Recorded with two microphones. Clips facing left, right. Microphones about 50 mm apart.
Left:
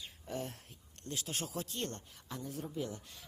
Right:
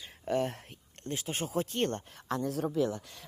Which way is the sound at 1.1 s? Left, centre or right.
Right.